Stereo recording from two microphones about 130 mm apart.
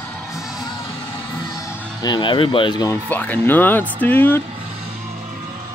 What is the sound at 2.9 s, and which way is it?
Speech, 15° left (ahead or behind).